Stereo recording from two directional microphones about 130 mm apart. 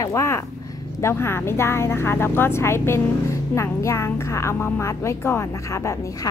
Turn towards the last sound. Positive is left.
turn(degrees=25)  # may be behind; listen again after turning